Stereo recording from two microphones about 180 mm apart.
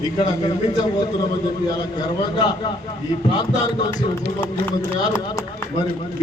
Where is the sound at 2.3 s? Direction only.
25° left (ahead or behind).